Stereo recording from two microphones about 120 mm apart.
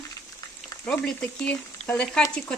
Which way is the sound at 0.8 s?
10° left (ahead or behind).